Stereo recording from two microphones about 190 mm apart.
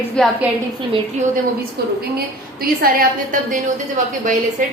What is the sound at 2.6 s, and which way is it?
A woman's voice, 50° right (ahead or behind).